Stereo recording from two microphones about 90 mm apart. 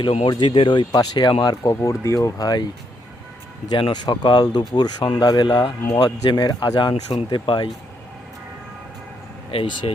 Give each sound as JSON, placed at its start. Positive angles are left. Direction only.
{"t": 0.0, "sound": "speech", "side_deg": 65}
{"t": 1.7, "sound": "speech", "side_deg": 35}
{"t": 3.9, "sound": "speech", "side_deg": 50}
{"t": 9.5, "sound": "speech", "side_deg": 90}